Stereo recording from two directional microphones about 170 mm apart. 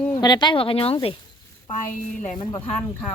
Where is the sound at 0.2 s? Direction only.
25° left (ahead or behind).